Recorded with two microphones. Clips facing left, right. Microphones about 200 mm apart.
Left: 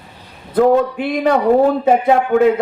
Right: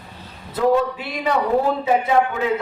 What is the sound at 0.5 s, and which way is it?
Speech, 50° left (ahead or behind).